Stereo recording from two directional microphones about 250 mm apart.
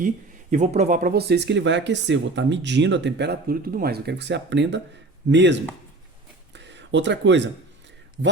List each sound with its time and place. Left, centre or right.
0.5 s speech: right
6.5 s a sound: right
8.2 s a man's voice: right